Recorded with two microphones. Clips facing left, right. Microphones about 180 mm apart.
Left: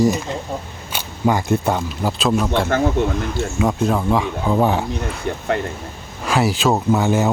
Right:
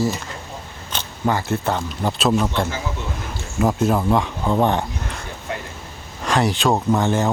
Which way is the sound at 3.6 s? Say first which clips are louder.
Right 1 dB; centre (ahead or behind).